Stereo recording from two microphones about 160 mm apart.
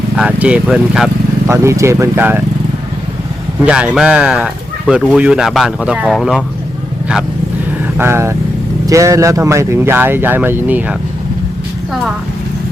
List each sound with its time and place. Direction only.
0.2 s speech: 10° right (ahead or behind)
1.5 s speech: 20° right (ahead or behind)
3.7 s speech: 5° right (ahead or behind)
7.9 s speech: 15° right (ahead or behind)